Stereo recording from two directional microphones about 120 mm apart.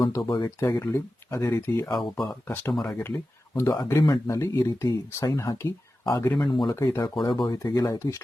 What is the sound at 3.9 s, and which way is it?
Speech, 35° left (ahead or behind).